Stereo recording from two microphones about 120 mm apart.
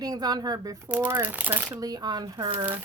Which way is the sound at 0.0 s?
35° right (ahead or behind).